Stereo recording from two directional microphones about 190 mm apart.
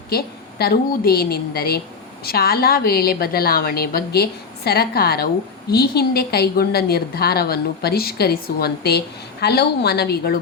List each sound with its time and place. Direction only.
0.1 s a woman's voice: 55° left (ahead or behind)